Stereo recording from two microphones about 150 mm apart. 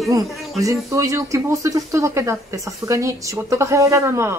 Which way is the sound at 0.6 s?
20° right (ahead or behind).